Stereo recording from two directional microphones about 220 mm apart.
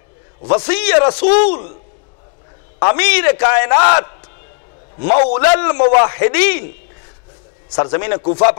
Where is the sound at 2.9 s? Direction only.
15° left (ahead or behind).